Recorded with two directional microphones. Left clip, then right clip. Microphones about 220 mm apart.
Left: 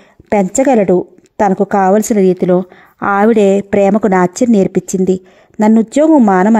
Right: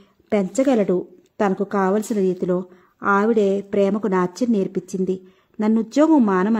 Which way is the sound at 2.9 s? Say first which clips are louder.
Left 7 dB; 40° left (ahead or behind).